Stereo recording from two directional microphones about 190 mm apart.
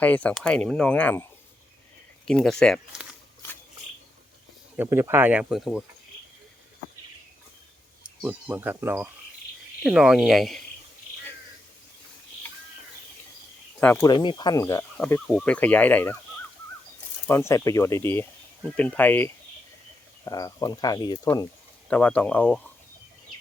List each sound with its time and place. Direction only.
0.0 s speech: 10° left (ahead or behind)
4.8 s speech: 15° right (ahead or behind)
8.2 s speech: 5° right (ahead or behind)
13.7 s speech: 10° left (ahead or behind)
14.1 s speech: 25° left (ahead or behind)
15.0 s speech: 5° left (ahead or behind)
17.2 s speech: 15° left (ahead or behind)
21.8 s speech: 5° left (ahead or behind)